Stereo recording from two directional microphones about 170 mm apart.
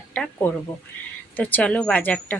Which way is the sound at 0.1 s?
5° left (ahead or behind).